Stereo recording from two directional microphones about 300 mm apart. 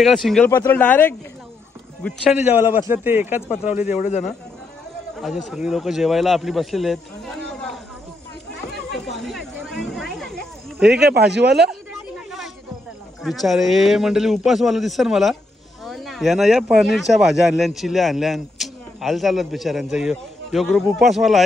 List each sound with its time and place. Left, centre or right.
0.0 s speech: centre
2.4 s speech: centre
3.9 s speech: left
5.5 s speech: centre
9.1 s snake: centre
11.1 s speech: right
11.6 s chatter: centre
13.2 s speech: centre